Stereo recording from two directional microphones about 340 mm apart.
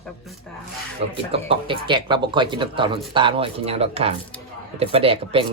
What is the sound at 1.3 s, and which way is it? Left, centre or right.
Speech, centre.